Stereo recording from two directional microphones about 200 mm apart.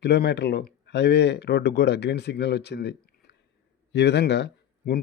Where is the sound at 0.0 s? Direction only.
55° left (ahead or behind).